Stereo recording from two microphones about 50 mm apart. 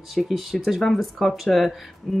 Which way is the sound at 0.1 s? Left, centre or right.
Centre.